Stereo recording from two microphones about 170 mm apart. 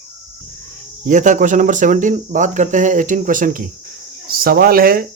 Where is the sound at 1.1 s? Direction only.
45° right (ahead or behind).